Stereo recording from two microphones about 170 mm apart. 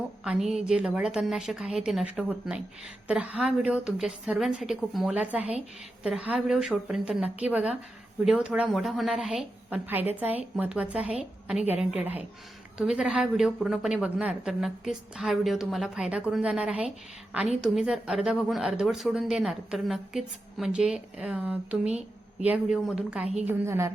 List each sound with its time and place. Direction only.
0.3 s a woman's voice: centre (ahead or behind)